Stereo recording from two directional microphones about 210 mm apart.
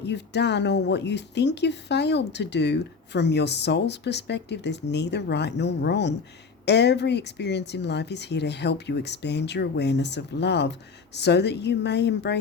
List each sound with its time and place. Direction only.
0.0 s speech: 55° left (ahead or behind)